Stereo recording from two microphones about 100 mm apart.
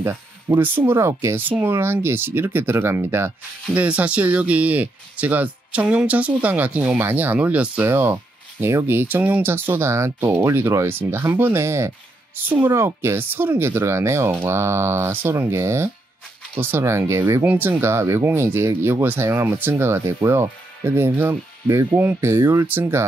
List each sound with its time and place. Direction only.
0.0 s speech: 25° right (ahead or behind)
3.7 s speech: 15° right (ahead or behind)